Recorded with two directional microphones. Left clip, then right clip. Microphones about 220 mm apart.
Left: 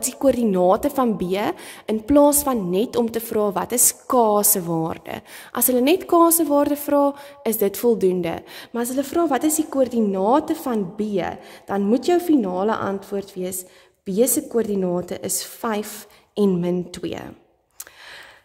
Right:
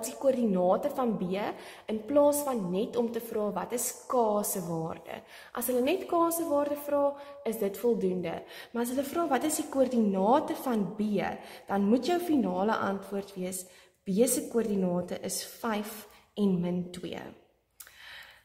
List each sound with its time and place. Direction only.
0.2 s speech: 45° left (ahead or behind)